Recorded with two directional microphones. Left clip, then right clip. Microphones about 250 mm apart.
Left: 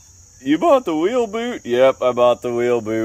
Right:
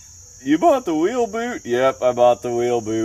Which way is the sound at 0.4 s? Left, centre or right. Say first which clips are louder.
Left 1 dB; centre.